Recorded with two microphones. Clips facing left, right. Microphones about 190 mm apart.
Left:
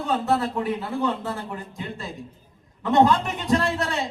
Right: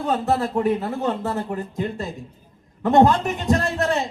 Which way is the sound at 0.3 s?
45° right (ahead or behind).